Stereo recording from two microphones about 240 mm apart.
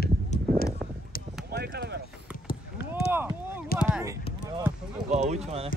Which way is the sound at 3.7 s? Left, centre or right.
Centre.